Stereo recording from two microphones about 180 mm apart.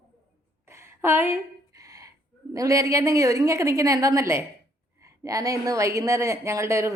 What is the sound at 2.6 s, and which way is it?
A woman's voice, 20° right (ahead or behind).